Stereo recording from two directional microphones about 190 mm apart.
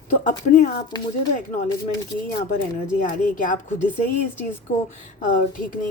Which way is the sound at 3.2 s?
45° left (ahead or behind).